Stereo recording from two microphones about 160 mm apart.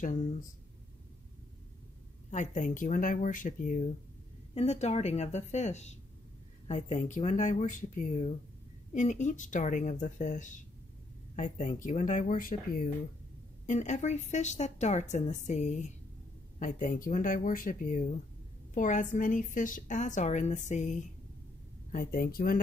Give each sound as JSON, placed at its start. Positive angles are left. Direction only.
{"t": 2.3, "sound": "a woman's voice", "side_deg": 50}
{"t": 13.7, "sound": "a woman's voice", "side_deg": 45}
{"t": 21.9, "sound": "speech", "side_deg": 65}